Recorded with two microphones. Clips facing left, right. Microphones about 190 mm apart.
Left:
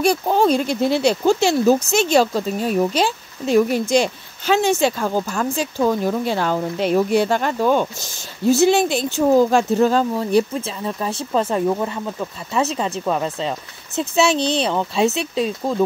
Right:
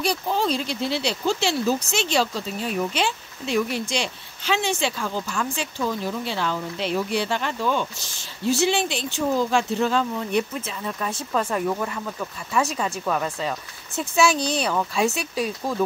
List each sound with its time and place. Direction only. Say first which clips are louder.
0.0 s a woman's voice: left 7 dB; 50° left (ahead or behind); by 15.8 s 25° left (ahead or behind)